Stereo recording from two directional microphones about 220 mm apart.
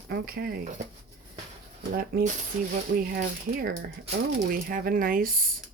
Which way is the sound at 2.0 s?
40° right (ahead or behind).